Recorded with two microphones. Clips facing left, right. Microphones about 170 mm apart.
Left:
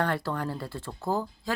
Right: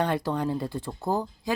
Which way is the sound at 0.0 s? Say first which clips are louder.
Right 3 dB; 15° right (ahead or behind).